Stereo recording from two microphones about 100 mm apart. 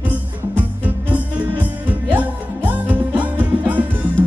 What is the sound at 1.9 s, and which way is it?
Music, 15° right (ahead or behind).